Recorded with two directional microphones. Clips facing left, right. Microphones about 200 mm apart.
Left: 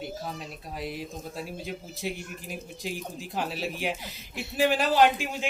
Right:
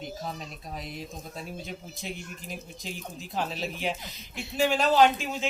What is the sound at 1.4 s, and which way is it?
Speech, 10° left (ahead or behind).